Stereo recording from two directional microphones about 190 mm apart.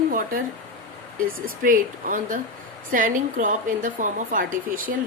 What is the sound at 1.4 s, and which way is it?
Speech, 45° right (ahead or behind).